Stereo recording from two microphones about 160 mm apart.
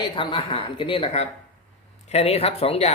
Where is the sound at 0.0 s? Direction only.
30° left (ahead or behind).